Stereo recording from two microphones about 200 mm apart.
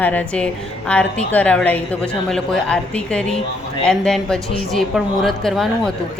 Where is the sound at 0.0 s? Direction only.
10° left (ahead or behind).